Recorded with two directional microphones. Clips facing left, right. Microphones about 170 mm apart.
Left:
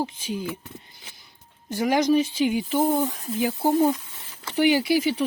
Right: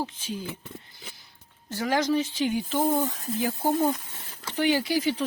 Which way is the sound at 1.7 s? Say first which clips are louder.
Left 5 dB; 15° left (ahead or behind).